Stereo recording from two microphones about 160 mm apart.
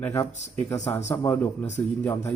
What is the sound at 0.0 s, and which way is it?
Speech, 15° left (ahead or behind).